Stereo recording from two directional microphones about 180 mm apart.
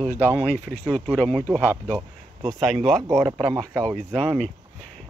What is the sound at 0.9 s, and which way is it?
Speech, centre (ahead or behind).